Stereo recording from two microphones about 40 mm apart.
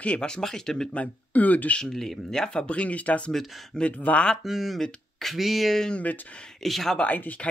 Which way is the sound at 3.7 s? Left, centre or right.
Centre.